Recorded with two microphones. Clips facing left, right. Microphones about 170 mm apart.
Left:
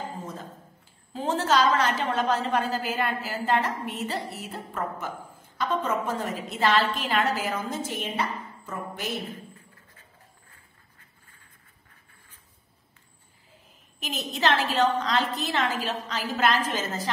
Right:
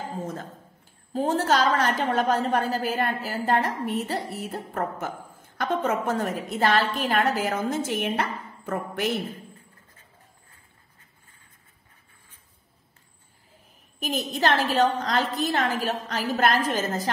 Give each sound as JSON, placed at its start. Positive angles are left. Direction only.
{"t": 1.1, "sound": "a woman's voice", "side_deg": -50}
{"t": 5.6, "sound": "a woman's voice", "side_deg": -65}
{"t": 14.0, "sound": "a woman's voice", "side_deg": -50}